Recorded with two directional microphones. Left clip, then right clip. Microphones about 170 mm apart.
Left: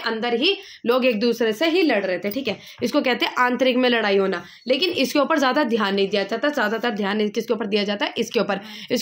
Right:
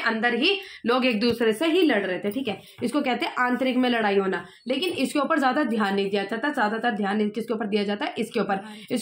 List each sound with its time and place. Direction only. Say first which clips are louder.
0.0 s a woman's voice: left 1 dB; 45° left (ahead or behind)